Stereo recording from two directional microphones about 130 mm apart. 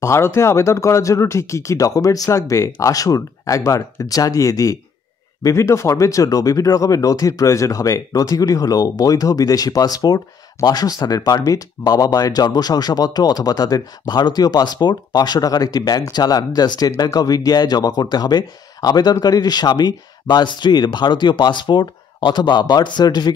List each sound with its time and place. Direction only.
0.0 s speech: 20° left (ahead or behind)